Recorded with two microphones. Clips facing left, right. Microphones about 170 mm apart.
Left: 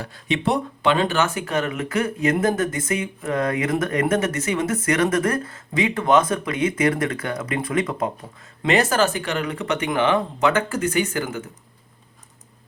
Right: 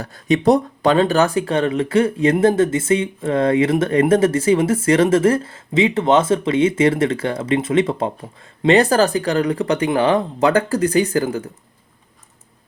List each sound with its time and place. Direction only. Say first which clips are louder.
0.0 s speech: right 8 dB; 40° right (ahead or behind)